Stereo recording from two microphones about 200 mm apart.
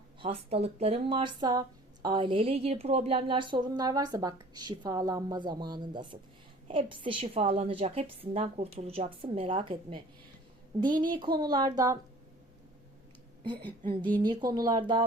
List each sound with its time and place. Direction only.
0.2 s speech: 30° right (ahead or behind)
10.8 s a woman's voice: 40° right (ahead or behind)
11.3 s speech: 20° right (ahead or behind)
14.2 s speech: 20° right (ahead or behind)